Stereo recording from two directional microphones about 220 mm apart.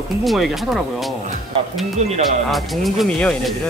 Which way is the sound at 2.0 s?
30° right (ahead or behind).